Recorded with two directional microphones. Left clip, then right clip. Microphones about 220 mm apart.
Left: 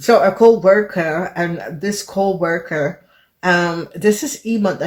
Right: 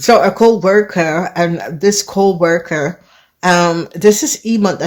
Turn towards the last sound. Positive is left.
turn(degrees=-45)  # may be behind; listen again after turning